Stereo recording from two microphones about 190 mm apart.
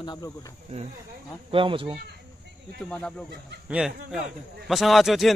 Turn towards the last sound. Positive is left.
turn(degrees=0)  # may be behind; listen again after turning